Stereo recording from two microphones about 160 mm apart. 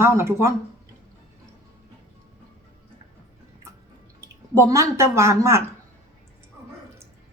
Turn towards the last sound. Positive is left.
turn(degrees=-15)  # may be behind; listen again after turning